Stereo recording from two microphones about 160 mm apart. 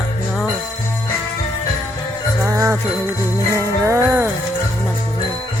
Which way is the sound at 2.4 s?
20° right (ahead or behind).